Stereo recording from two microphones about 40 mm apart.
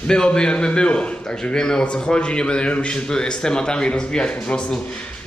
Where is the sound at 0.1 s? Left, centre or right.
Centre.